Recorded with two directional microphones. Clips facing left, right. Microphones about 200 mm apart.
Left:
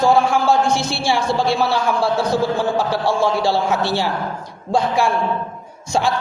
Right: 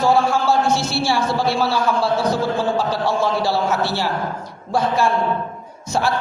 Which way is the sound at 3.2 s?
15° left (ahead or behind).